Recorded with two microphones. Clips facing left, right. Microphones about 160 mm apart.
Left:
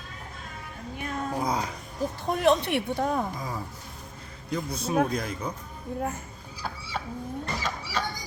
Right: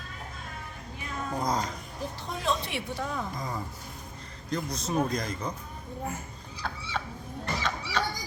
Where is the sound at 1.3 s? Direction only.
5° left (ahead or behind).